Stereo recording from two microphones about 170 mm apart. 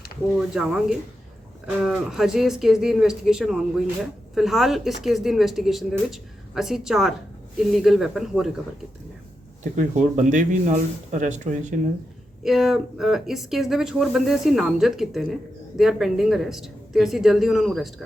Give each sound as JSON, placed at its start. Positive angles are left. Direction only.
{"t": 0.3, "sound": "speech", "side_deg": -5}
{"t": 9.7, "sound": "speech", "side_deg": -45}
{"t": 12.4, "sound": "speech", "side_deg": 0}